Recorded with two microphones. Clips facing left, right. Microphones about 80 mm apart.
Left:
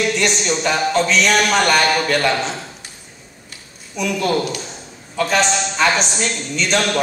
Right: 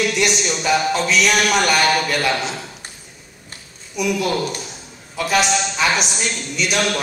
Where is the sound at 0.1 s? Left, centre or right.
Centre.